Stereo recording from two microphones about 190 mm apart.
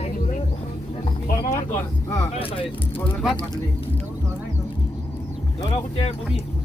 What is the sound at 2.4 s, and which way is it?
Speech, 25° left (ahead or behind).